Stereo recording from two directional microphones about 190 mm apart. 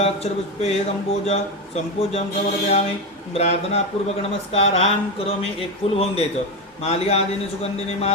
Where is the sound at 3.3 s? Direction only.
35° left (ahead or behind).